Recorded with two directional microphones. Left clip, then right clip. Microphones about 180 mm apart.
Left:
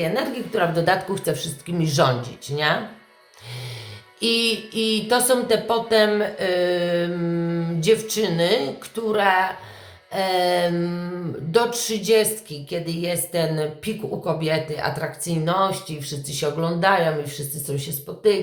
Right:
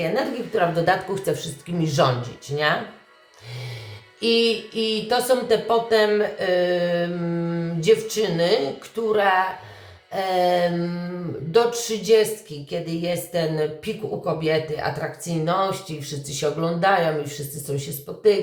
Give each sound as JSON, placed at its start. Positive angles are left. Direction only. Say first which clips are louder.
{"t": 0.0, "sound": "speech", "louder": "even", "side_deg": 15}
{"t": 4.2, "sound": "speech", "louder": "right 1 dB", "side_deg": 20}